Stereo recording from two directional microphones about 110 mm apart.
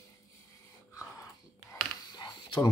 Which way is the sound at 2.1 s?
40° left (ahead or behind).